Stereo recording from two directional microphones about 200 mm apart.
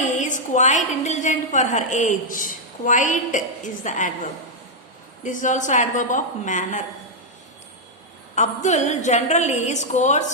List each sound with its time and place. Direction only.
0.2 s a woman's voice: 40° left (ahead or behind)
5.2 s a woman's voice: 40° left (ahead or behind)
8.4 s a woman's voice: 35° left (ahead or behind)